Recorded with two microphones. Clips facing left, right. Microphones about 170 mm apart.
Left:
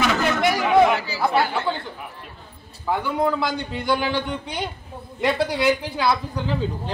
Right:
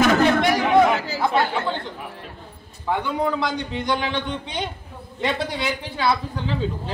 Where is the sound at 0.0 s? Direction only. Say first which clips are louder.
Right 5 dB; 45° right (ahead or behind).